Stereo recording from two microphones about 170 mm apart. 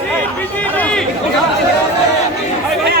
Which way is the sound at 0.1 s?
10° left (ahead or behind).